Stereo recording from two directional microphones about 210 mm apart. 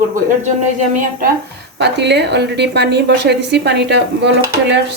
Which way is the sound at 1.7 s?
55° right (ahead or behind).